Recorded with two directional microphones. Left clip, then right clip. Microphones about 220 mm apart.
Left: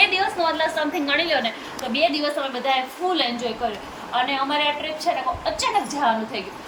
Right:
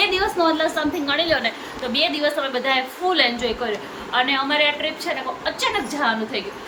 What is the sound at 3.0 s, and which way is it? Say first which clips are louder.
Speech: right 3 dB; 30° right (ahead or behind).